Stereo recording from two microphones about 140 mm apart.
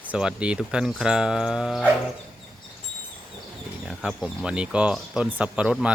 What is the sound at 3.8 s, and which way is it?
Speech, 5° right (ahead or behind).